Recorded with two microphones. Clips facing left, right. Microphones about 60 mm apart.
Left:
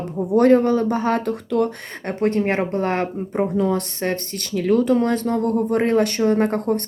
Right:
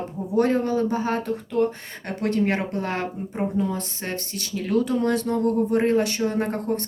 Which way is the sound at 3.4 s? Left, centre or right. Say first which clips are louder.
Left 5 dB; left.